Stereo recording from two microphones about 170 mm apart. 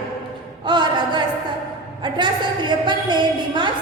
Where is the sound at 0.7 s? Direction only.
25° right (ahead or behind).